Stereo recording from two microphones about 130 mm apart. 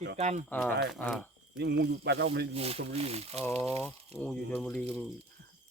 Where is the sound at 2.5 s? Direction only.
50° right (ahead or behind).